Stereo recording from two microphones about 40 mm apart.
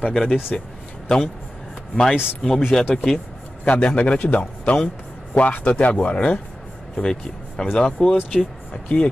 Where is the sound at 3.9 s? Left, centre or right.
Left.